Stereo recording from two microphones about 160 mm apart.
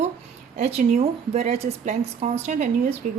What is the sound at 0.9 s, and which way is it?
A woman's voice, 40° right (ahead or behind).